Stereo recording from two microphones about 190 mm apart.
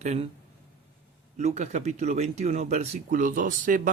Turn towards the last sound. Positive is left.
turn(degrees=-45)  # may be behind; listen again after turning